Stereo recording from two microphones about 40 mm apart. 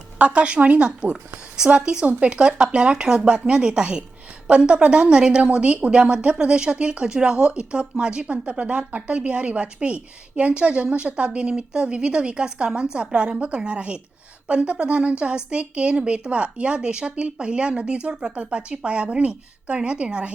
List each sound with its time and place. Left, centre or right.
0.2 s a woman's voice: right